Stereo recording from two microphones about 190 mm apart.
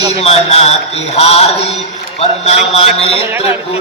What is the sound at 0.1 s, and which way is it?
Mantra, 30° left (ahead or behind).